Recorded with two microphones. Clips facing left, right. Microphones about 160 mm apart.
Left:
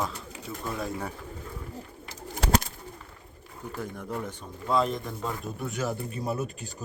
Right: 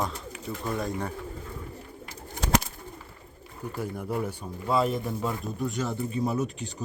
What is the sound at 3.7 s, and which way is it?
A man's voice, 10° right (ahead or behind).